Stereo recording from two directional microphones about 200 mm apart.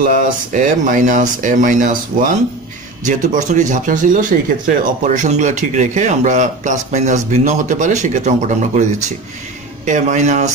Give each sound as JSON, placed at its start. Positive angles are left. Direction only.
{"t": 0.0, "sound": "speech", "side_deg": -40}
{"t": 9.8, "sound": "speech", "side_deg": -40}